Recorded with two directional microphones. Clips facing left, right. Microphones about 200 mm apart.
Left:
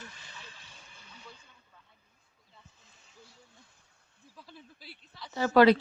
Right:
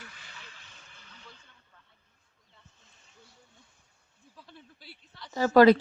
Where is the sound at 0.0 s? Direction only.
35° left (ahead or behind).